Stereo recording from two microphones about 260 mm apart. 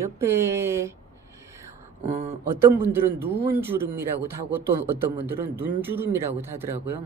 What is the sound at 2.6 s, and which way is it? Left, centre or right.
A man's voice, centre.